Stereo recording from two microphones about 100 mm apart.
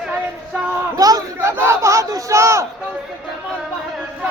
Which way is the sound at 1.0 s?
40° right (ahead or behind).